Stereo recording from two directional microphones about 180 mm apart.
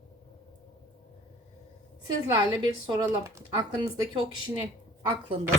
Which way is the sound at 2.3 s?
20° right (ahead or behind).